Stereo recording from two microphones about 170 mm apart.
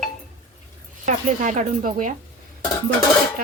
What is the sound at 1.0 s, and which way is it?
Speech, 45° right (ahead or behind).